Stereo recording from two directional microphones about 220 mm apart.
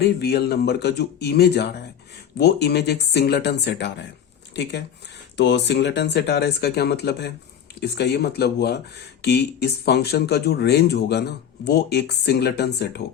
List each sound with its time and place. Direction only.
0.0 s speech: 45° left (ahead or behind)